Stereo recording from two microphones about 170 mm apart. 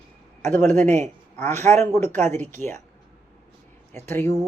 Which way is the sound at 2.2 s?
10° left (ahead or behind).